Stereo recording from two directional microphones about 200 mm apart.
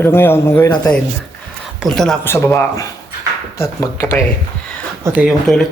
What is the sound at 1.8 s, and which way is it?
Speech, centre (ahead or behind).